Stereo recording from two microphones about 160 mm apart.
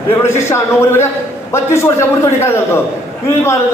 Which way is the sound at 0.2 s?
15° left (ahead or behind).